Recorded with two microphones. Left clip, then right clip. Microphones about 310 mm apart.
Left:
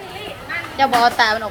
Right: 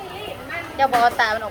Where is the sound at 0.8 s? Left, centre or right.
Left.